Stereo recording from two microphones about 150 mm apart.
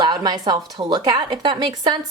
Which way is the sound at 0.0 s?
25° right (ahead or behind).